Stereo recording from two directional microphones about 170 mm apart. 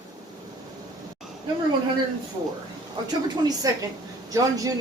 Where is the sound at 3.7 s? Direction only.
20° right (ahead or behind).